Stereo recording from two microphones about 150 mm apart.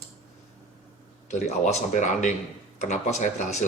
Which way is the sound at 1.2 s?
50° left (ahead or behind).